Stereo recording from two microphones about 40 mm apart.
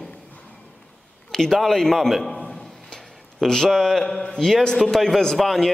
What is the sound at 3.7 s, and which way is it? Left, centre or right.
A man's voice, centre.